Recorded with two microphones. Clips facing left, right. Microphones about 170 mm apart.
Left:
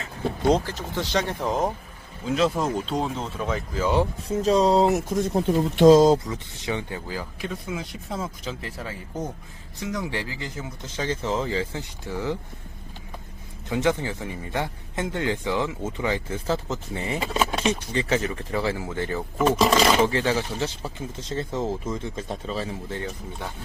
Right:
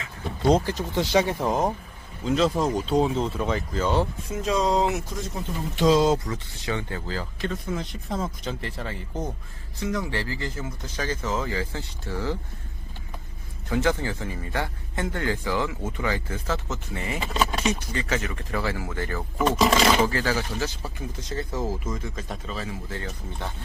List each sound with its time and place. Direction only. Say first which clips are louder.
0.6 s speech: right 4 dB; 15° right (ahead or behind); by 4.0 s 5° left (ahead or behind)
4.3 s speech: left 6 dB; 35° left (ahead or behind)
6.2 s speech: even; 20° left (ahead or behind)
9.8 s speech: right 1 dB; 15° left (ahead or behind)
13.7 s a man's voice: left 1 dB; 20° left (ahead or behind)
19.4 s speech: left 1 dB; 5° left (ahead or behind)
20.1 s a man's voice: left 2 dB; 25° left (ahead or behind)